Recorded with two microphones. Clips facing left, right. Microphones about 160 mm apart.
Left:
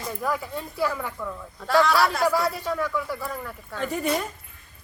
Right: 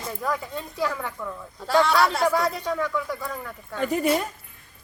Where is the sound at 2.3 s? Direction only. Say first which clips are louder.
Right 1 dB; 20° right (ahead or behind).